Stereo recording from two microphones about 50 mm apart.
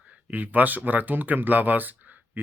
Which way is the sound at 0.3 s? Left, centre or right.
Right.